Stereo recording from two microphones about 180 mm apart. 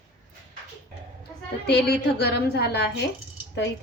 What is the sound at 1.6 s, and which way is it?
A woman's voice, 65° left (ahead or behind).